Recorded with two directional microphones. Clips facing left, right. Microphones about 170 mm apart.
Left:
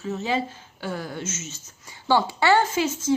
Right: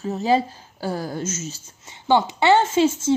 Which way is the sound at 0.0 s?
35° right (ahead or behind).